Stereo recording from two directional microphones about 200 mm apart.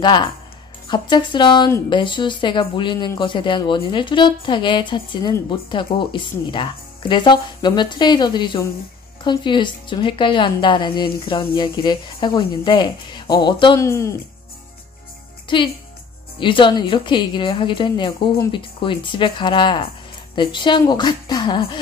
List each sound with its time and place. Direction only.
0.0 s a woman's voice: 25° left (ahead or behind)
15.4 s music: 25° left (ahead or behind)
16.3 s a woman's voice: 25° left (ahead or behind)